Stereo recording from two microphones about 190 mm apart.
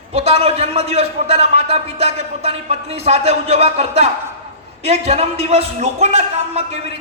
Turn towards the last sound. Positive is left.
turn(degrees=-35)  # may be behind; listen again after turning